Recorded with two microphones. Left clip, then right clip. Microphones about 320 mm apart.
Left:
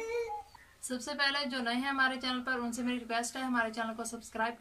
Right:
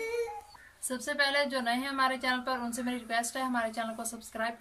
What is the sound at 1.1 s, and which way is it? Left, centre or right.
A woman's voice, centre.